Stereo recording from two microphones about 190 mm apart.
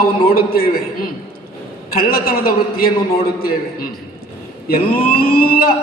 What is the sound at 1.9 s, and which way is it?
A man's voice, 50° left (ahead or behind).